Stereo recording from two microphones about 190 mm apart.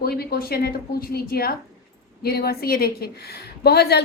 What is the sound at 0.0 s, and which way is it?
A woman's voice, 55° left (ahead or behind).